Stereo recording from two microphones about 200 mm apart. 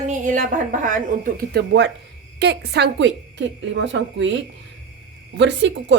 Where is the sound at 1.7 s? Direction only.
60° right (ahead or behind).